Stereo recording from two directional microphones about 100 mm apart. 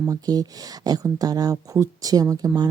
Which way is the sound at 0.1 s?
40° right (ahead or behind).